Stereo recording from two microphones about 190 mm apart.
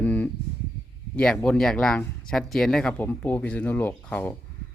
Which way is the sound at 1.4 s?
Centre (ahead or behind).